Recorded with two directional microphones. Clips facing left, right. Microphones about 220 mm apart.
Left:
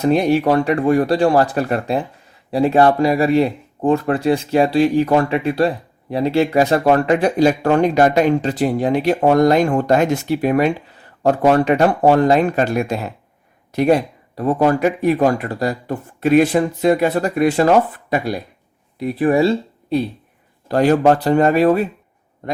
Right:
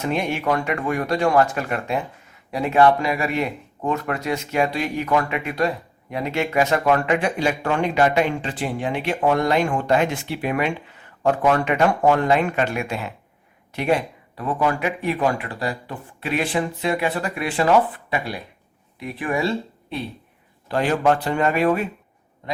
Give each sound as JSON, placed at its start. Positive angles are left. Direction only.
{"t": 0.0, "sound": "speech", "side_deg": 35}